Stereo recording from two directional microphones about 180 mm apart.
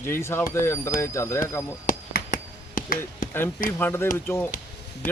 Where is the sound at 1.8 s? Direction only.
50° left (ahead or behind).